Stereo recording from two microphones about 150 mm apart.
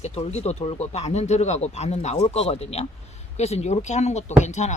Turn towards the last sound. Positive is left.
turn(degrees=50)  # may be behind; listen again after turning